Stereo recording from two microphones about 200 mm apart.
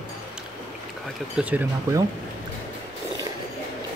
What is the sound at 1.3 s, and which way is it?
Speech, 5° right (ahead or behind).